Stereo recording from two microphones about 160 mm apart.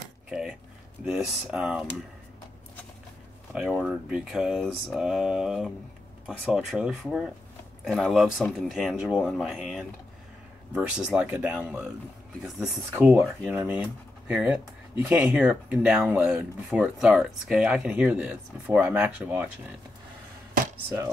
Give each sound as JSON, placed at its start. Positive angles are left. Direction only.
{"t": 0.3, "sound": "a sound", "side_deg": -5}
{"t": 1.0, "sound": "speech", "side_deg": -5}
{"t": 3.5, "sound": "speech", "side_deg": -5}
{"t": 12.9, "sound": "speech", "side_deg": -15}
{"t": 20.7, "sound": "speech", "side_deg": -15}